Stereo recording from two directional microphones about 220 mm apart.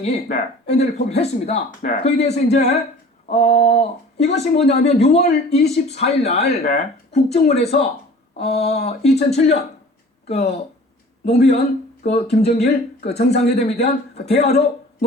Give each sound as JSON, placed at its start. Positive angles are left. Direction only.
{"t": 0.0, "sound": "speech", "side_deg": 30}